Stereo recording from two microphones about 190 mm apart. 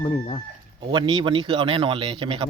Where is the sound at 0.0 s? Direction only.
30° left (ahead or behind).